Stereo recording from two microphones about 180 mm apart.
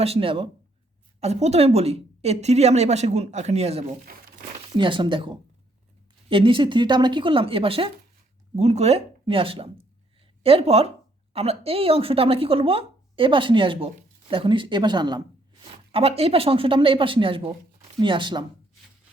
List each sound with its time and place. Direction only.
0.0 s speech: 30° right (ahead or behind)